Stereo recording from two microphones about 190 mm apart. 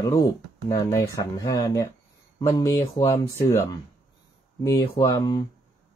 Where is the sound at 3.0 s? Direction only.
15° left (ahead or behind).